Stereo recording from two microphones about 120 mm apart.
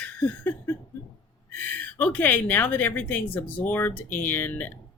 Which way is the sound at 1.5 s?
15° left (ahead or behind).